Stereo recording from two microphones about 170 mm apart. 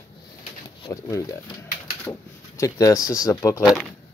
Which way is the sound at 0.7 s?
25° left (ahead or behind).